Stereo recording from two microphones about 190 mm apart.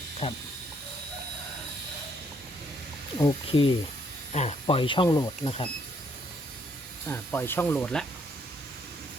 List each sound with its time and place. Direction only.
0.2 s speech: 25° left (ahead or behind)
3.2 s speech: 20° left (ahead or behind)
5.4 s speech: 30° left (ahead or behind)
7.1 s speech: 10° left (ahead or behind)